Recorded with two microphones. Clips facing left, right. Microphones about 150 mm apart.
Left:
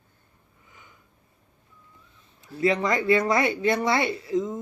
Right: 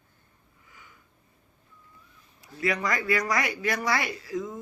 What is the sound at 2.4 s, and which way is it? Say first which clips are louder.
Speech: left 5 dB; 25° left (ahead or behind).